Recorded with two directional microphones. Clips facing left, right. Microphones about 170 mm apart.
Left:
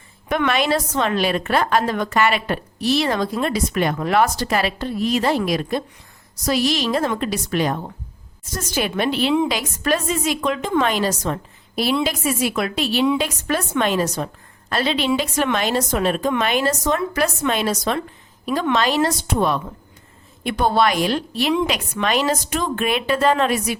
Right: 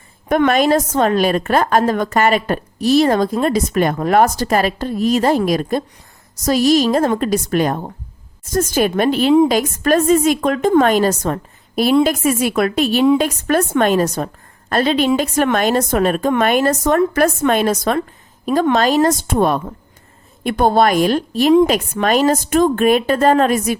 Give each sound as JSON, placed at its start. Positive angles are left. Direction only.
{"t": 0.3, "sound": "a woman's voice", "side_deg": -45}